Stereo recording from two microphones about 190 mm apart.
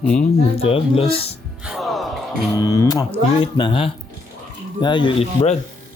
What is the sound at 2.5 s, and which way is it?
Music, 20° left (ahead or behind).